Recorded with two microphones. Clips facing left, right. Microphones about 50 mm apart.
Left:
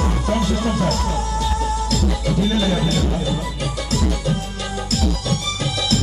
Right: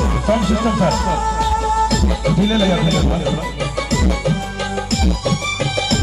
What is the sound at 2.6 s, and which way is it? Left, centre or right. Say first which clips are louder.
Speech: right 4 dB; right.